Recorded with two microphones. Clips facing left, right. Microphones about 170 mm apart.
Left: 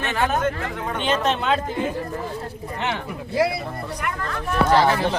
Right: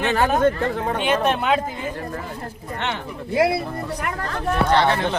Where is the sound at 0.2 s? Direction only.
35° right (ahead or behind).